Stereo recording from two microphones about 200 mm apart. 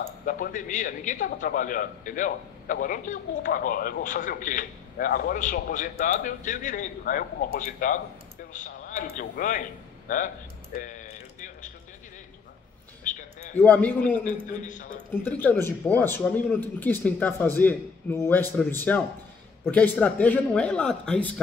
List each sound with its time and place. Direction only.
0.2 s a man's voice: 45° left (ahead or behind)
13.0 s a sound: 40° left (ahead or behind)
13.6 s speech: 5° left (ahead or behind)
14.5 s a man's voice: 40° left (ahead or behind)
15.2 s speech: 10° left (ahead or behind)